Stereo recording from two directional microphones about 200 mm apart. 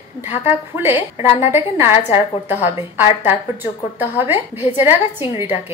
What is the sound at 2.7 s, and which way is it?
Speech, 30° left (ahead or behind).